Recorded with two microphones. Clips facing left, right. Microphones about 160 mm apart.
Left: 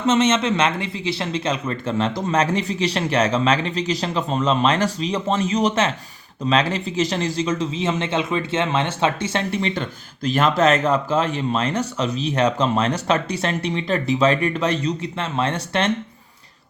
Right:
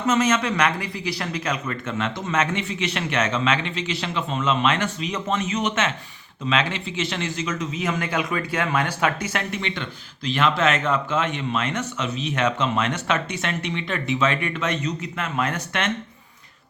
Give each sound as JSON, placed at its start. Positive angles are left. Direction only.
{"t": 0.0, "sound": "speech", "side_deg": 25}